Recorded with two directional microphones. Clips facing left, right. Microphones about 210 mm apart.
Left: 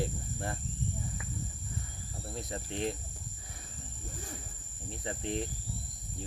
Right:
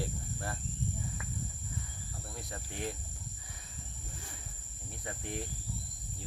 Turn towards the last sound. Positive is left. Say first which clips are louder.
# left 5 dB
turn(degrees=25)  # may be behind; listen again after turning